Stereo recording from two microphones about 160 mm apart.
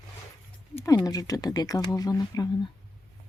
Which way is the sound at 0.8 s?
20° left (ahead or behind).